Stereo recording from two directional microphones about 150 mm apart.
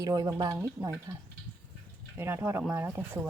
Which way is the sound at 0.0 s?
25° right (ahead or behind).